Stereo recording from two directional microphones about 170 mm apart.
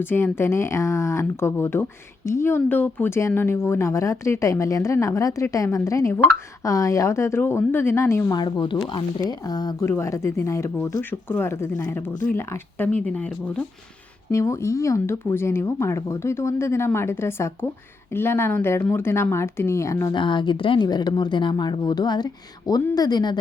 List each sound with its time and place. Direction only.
0.1 s speech: 15° left (ahead or behind)
14.3 s speech: 15° left (ahead or behind)